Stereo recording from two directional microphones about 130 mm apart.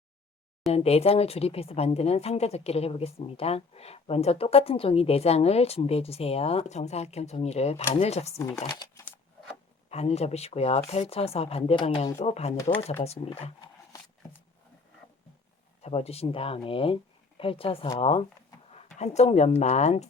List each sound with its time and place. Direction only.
0.7 s a woman's voice: 50° left (ahead or behind)
8.4 s speech: 30° left (ahead or behind)
9.9 s a woman's voice: 55° left (ahead or behind)
15.8 s a woman's voice: 50° left (ahead or behind)
18.9 s speech: 60° left (ahead or behind)